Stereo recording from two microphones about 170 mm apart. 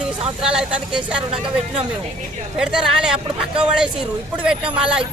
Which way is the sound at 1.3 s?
30° right (ahead or behind).